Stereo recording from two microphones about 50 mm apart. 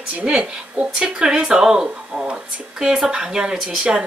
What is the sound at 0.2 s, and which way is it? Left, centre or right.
Speech, centre.